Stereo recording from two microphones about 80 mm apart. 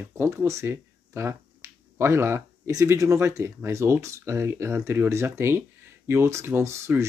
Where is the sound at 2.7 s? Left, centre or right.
Right.